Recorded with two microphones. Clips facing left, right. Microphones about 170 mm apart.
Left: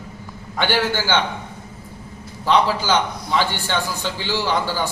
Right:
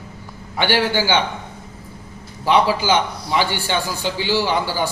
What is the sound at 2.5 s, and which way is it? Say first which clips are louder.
A man's voice: right 1 dB; 10° right (ahead or behind).